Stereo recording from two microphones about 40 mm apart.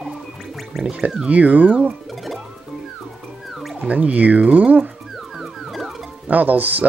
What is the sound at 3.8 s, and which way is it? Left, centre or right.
Speech, right.